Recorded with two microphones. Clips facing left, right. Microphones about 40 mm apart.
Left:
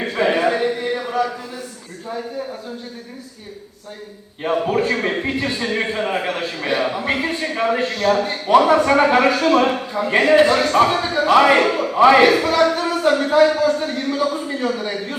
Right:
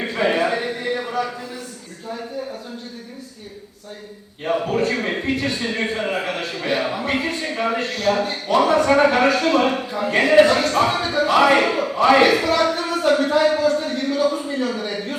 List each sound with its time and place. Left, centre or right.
0.0 s a sound: centre
4.4 s speech: centre
10.3 s a man's voice: centre
11.9 s a man's voice: centre
12.2 s speech: centre
14.1 s a sound: centre
14.7 s speech: centre